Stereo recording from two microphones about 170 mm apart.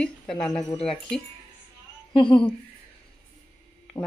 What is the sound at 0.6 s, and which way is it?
Speech, 30° left (ahead or behind).